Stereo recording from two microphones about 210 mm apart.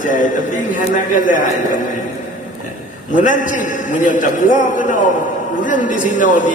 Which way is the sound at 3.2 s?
40° left (ahead or behind).